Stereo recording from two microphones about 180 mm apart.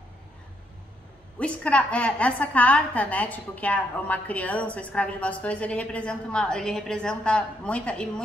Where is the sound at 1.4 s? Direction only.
5° left (ahead or behind).